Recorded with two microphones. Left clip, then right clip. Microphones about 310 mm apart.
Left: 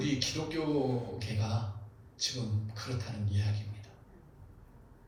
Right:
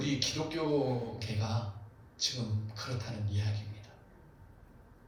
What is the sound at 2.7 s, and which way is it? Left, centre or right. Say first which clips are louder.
Speech: right 1 dB; left.